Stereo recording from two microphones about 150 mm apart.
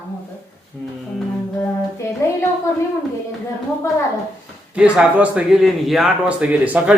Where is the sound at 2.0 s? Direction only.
20° left (ahead or behind).